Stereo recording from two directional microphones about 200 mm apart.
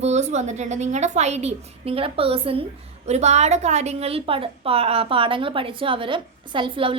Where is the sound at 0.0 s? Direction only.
35° right (ahead or behind).